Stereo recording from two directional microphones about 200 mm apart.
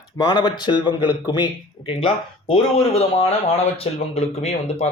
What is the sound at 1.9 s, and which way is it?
A man's voice, 25° left (ahead or behind).